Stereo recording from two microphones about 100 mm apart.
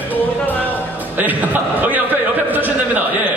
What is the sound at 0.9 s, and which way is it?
A man's voice, 15° right (ahead or behind).